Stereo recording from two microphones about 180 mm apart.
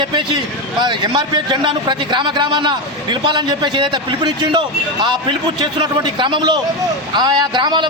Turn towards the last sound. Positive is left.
turn(degrees=-25)  # may be behind; listen again after turning